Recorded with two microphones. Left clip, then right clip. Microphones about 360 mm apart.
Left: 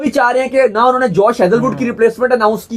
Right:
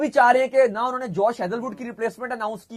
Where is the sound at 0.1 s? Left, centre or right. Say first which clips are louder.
Left 5 dB; right.